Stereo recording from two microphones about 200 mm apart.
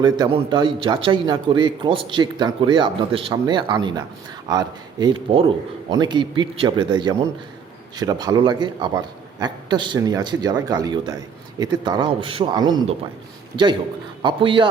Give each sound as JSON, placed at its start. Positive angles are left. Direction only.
{"t": 0.0, "sound": "a man's voice", "side_deg": -20}
{"t": 14.2, "sound": "a man's voice", "side_deg": -25}